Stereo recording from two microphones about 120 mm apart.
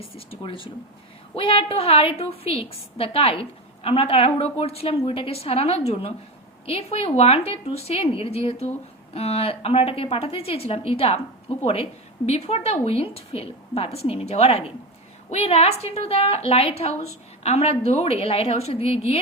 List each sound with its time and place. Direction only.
0.2 s a woman's voice: 50° left (ahead or behind)